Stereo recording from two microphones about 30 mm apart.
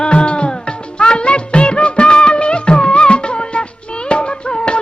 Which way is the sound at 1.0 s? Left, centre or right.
Left.